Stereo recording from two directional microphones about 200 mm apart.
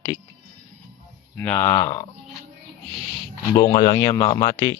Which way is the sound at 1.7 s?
20° left (ahead or behind).